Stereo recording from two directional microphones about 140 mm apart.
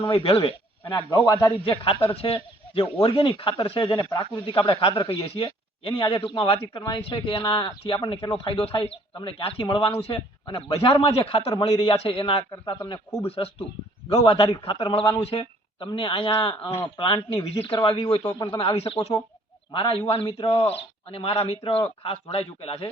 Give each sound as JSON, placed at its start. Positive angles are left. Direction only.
{"t": 0.0, "sound": "a man's voice", "side_deg": 40}
{"t": 1.1, "sound": "a man's voice", "side_deg": 30}
{"t": 4.4, "sound": "a man's voice", "side_deg": 40}
{"t": 13.2, "sound": "a man's voice", "side_deg": 45}